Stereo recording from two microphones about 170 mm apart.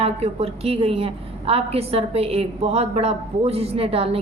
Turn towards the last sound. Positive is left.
turn(degrees=-35)  # may be behind; listen again after turning